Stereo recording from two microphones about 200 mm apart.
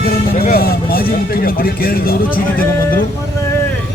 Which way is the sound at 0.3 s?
50° left (ahead or behind).